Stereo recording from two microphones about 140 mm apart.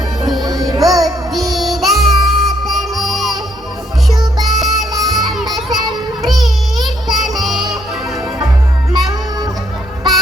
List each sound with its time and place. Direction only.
0.7 s music: 25° right (ahead or behind)
1.3 s music: centre (ahead or behind)
4.1 s music: 30° right (ahead or behind)
4.4 s music: centre (ahead or behind)
5.1 s children playing: centre (ahead or behind)
5.5 s music: centre (ahead or behind)